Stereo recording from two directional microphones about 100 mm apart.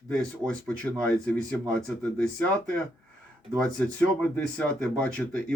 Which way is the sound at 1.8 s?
10° left (ahead or behind).